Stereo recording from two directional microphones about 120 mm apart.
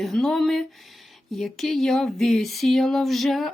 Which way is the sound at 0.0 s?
5° left (ahead or behind).